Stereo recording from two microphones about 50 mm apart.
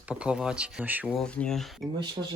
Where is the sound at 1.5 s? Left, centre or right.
Centre.